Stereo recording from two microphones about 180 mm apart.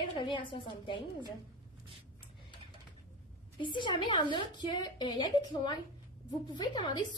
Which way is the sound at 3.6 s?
25° left (ahead or behind).